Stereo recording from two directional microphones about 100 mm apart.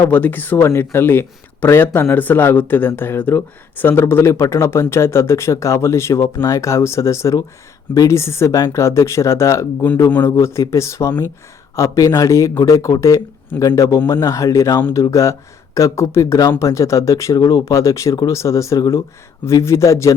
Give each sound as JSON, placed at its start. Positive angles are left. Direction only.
{"t": 0.0, "sound": "speech", "side_deg": 20}
{"t": 10.1, "sound": "speech", "side_deg": 20}
{"t": 10.3, "sound": "speech", "side_deg": 30}